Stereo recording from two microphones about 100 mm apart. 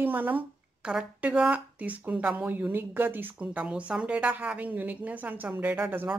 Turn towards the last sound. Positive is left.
turn(degrees=-20)  # may be behind; listen again after turning